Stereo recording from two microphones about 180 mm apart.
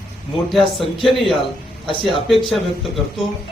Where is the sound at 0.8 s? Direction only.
30° left (ahead or behind).